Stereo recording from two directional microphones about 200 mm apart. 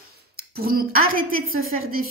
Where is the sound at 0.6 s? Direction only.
45° right (ahead or behind).